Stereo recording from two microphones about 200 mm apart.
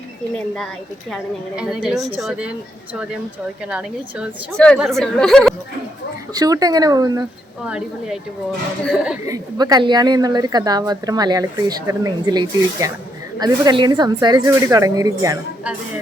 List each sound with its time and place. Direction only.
1.1 s a woman's voice: centre (ahead or behind)
3.7 s a woman's voice: 5° right (ahead or behind)
6.3 s a woman's voice: 20° right (ahead or behind)
7.6 s a woman's voice: 5° right (ahead or behind)
9.2 s a woman's voice: 15° right (ahead or behind)